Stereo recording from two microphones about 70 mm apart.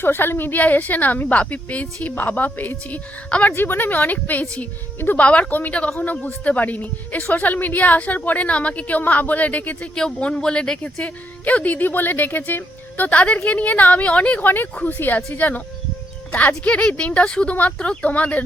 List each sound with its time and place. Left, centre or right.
0.0 s a woman's voice: left
3.5 s a woman's voice: left